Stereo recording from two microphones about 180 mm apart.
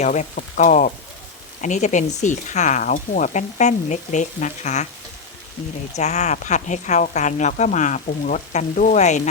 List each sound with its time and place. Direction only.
0.0 s a woman's voice: 40° left (ahead or behind)
5.9 s a woman's voice: 40° left (ahead or behind)